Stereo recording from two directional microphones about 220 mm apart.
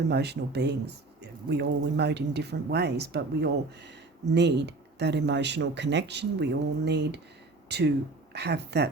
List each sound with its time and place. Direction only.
0.1 s speech: 50° right (ahead or behind)